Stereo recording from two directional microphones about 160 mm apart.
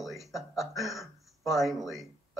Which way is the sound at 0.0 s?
Centre (ahead or behind).